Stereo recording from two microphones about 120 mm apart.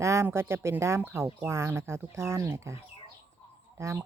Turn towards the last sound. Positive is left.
turn(degrees=-20)  # may be behind; listen again after turning